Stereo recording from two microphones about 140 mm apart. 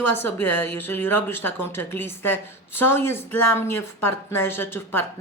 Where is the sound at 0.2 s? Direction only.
15° left (ahead or behind).